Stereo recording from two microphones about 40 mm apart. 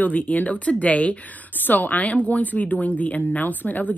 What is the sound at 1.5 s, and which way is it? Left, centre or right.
Speech, left.